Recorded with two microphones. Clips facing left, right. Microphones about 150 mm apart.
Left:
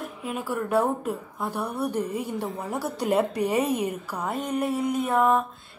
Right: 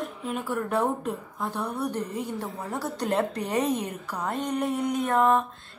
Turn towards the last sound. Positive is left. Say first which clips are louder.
# even
turn(degrees=5)  # may be behind; listen again after turning